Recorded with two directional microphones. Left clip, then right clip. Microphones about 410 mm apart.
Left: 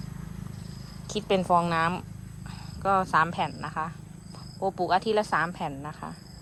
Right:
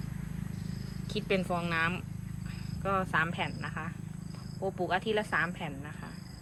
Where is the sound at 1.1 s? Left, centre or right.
Centre.